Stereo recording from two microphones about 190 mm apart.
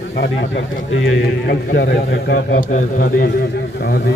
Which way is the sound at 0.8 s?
90° left.